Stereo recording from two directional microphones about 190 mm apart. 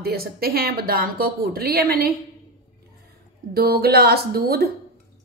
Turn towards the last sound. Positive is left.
turn(degrees=-55)  # may be behind; listen again after turning